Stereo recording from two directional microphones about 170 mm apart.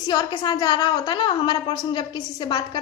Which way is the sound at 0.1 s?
25° left (ahead or behind).